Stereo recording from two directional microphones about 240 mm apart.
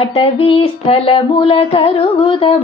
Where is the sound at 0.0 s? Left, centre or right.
Left.